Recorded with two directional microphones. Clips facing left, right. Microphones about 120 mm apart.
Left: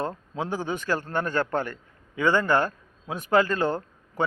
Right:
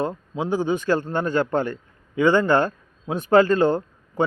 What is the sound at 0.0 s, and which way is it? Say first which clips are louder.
A man's voice: right 4 dB; 15° right (ahead or behind).